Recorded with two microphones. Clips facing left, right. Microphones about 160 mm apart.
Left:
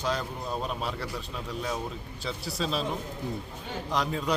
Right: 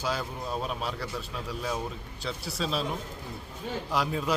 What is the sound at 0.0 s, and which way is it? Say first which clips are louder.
A man's voice: left 1 dB; 5° right (ahead or behind).